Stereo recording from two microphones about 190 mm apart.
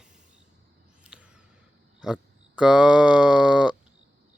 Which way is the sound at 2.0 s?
5° right (ahead or behind).